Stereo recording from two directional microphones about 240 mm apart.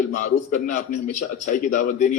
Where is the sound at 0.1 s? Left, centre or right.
Left.